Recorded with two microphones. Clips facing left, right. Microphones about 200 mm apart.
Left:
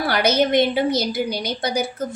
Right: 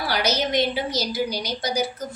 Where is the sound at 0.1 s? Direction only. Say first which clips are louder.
Left 5 dB; 55° left (ahead or behind).